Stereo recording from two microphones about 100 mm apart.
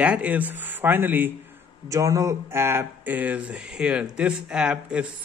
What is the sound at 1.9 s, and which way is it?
Speech, 35° right (ahead or behind).